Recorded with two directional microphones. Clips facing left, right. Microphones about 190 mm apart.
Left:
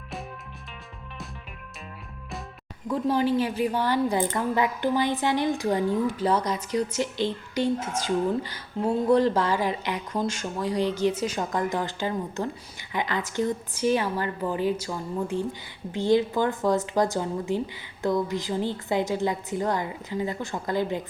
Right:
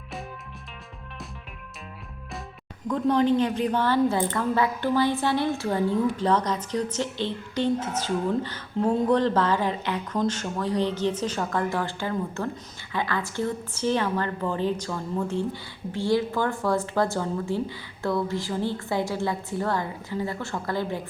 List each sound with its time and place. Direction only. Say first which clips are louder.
2.8 s speech: right 2 dB; 10° left (ahead or behind)